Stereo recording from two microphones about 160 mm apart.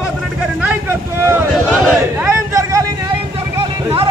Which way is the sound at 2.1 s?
15° right (ahead or behind).